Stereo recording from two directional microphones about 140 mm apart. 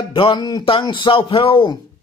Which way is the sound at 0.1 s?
35° left (ahead or behind).